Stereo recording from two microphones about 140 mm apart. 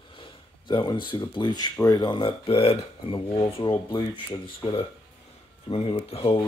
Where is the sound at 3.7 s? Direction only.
35° left (ahead or behind).